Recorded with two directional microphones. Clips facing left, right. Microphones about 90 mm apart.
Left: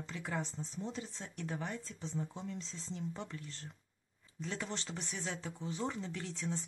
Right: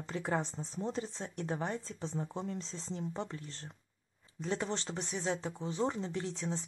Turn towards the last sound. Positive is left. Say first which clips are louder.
# right 3 dB
turn(degrees=-25)  # may be behind; listen again after turning